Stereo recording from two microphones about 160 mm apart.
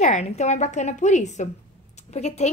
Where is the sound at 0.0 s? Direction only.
45° left (ahead or behind).